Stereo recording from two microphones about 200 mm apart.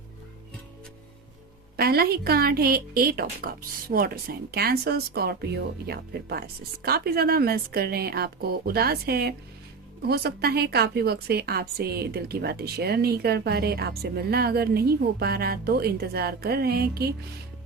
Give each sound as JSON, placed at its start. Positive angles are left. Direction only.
{"t": 1.7, "sound": "a woman's voice", "side_deg": -50}